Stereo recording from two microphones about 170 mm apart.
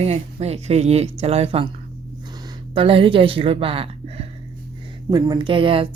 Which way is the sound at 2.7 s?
30° right (ahead or behind).